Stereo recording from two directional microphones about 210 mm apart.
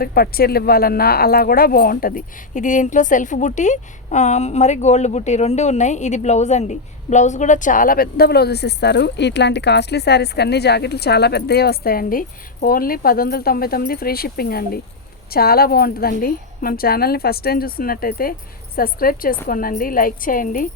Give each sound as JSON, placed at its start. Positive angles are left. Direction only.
{"t": 0.0, "sound": "a woman's voice", "side_deg": 45}